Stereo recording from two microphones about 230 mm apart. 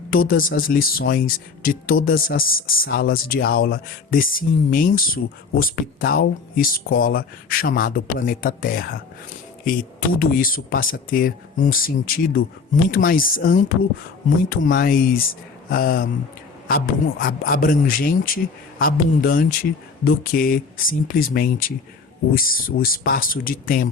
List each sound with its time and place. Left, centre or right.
0.1 s speech: left
10.2 s speech: left